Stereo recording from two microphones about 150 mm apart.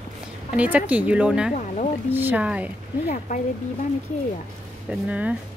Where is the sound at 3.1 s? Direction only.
55° left (ahead or behind).